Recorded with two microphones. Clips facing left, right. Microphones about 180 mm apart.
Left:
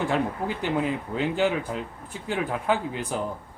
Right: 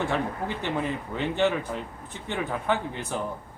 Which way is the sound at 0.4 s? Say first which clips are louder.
Left 3 dB; 10° left (ahead or behind).